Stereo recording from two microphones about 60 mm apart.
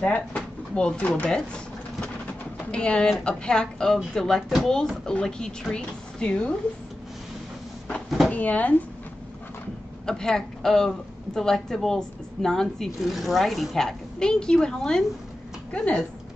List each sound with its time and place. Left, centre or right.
0.0 s drawer open or close: left
0.9 s speech: left
1.3 s sewing machine: centre
2.7 s a woman's voice: centre
8.3 s speech: left
10.0 s a woman's voice: centre
15.7 s speech: centre